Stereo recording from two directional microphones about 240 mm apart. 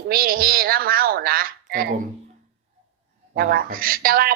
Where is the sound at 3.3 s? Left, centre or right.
Right.